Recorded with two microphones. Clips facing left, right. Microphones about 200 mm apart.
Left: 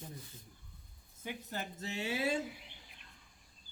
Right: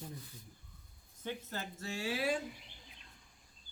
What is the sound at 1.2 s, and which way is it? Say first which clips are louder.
Speech: even; 15° left (ahead or behind).